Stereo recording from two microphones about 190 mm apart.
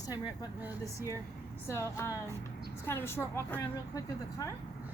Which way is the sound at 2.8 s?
10° left (ahead or behind).